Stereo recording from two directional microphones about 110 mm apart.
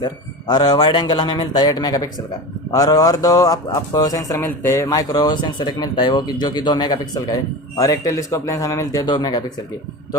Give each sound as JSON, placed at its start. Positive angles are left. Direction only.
{"t": 0.0, "sound": "speech", "side_deg": 40}
{"t": 4.9, "sound": "speech", "side_deg": 35}